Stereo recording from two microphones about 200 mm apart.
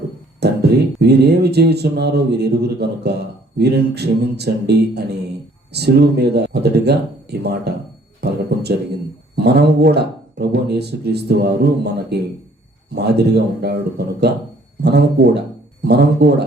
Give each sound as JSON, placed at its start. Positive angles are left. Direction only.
{"t": 0.3, "sound": "a man's voice", "side_deg": -55}